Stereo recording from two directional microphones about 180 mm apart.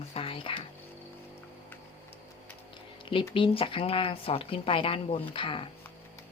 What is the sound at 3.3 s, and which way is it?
A woman's voice, 30° left (ahead or behind).